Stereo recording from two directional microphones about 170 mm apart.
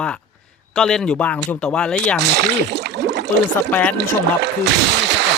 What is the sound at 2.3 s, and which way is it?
Speech, 80° right.